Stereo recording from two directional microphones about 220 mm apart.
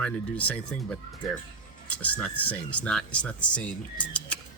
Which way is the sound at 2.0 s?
5° left (ahead or behind).